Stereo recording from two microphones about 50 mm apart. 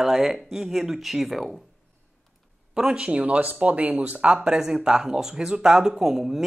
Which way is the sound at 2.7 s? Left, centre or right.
Centre.